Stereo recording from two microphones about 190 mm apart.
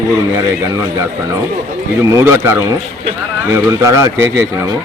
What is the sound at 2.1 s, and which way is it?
A man's voice, 15° right (ahead or behind).